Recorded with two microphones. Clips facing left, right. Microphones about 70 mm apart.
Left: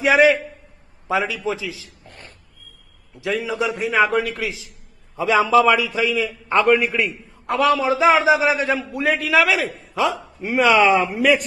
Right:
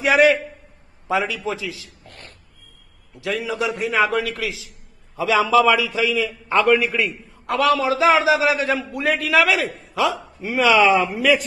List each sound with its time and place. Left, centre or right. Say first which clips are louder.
0.0 s a man's voice: left 1 dB; centre
3.9 s a man's voice: left 2 dB; centre
5.1 s a man's voice: left 1 dB; left
5.6 s a man's voice: even; centre